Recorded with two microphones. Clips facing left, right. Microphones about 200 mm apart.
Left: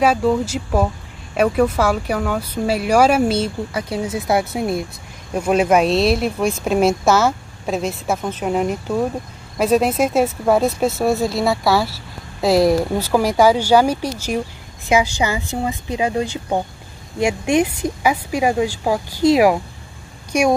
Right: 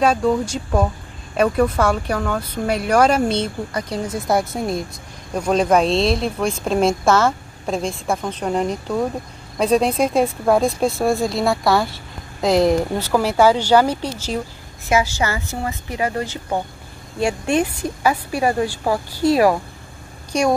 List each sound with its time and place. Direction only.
0.0 s speech: 5° left (ahead or behind)